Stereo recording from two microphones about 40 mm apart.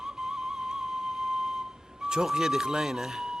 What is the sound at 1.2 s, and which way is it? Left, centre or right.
Flute, centre.